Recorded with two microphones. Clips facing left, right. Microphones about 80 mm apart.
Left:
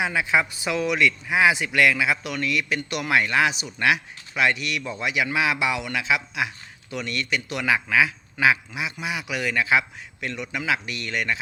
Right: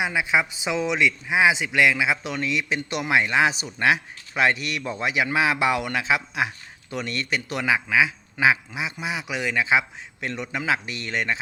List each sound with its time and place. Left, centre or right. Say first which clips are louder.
0.0 s a man's voice: even; centre; by 7.6 s right
7.6 s a man's voice: even; centre